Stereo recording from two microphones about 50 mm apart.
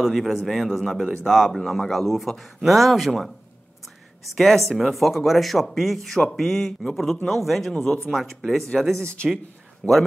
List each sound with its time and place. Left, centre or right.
0.0 s a man's voice: centre
4.4 s speech: centre
9.0 s speech: centre
9.8 s a man's voice: centre